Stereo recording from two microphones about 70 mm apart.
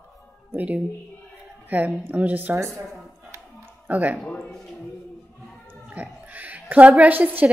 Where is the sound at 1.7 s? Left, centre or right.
Right.